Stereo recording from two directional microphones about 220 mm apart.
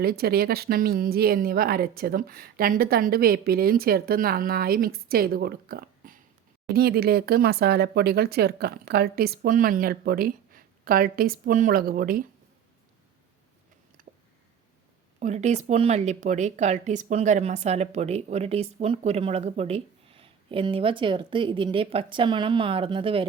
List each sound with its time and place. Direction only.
0.0 s speech: 45° right (ahead or behind)
14.0 s a sound: 40° right (ahead or behind)
15.2 s speech: 30° right (ahead or behind)